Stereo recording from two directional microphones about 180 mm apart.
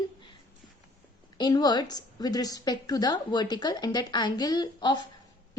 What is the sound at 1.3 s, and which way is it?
A woman's voice, 25° left (ahead or behind).